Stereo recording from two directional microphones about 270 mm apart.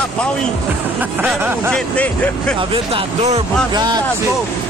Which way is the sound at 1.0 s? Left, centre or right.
Centre.